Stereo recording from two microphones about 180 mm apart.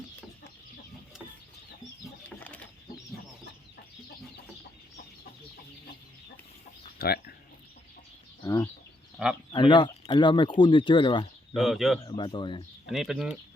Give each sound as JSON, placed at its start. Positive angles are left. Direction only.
{"t": 7.0, "sound": "a sound", "side_deg": 60}
{"t": 8.4, "sound": "speech", "side_deg": 15}
{"t": 11.5, "sound": "speech", "side_deg": 0}
{"t": 12.0, "sound": "speech", "side_deg": 25}
{"t": 12.9, "sound": "speech", "side_deg": -5}